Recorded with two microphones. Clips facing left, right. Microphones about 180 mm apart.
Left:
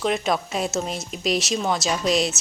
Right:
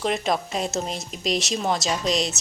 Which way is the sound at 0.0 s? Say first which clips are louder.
Left 1 dB; centre (ahead or behind).